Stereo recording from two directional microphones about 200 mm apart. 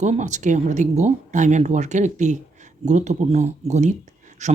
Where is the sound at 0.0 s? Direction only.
35° right (ahead or behind).